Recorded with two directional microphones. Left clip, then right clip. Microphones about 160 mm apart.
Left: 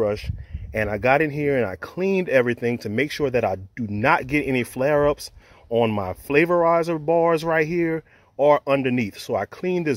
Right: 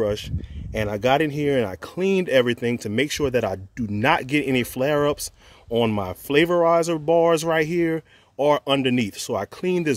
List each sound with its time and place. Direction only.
0.0 s speech: 15° right (ahead or behind)